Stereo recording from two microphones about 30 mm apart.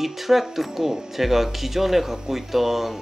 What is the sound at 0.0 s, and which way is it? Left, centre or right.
Speech, centre.